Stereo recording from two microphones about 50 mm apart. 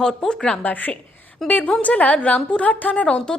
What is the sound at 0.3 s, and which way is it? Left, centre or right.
Speech, centre.